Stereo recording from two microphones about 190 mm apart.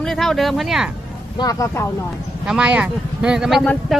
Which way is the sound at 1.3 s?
20° left (ahead or behind).